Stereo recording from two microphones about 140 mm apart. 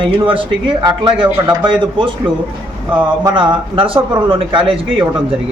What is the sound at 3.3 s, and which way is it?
Speech, 35° right (ahead or behind).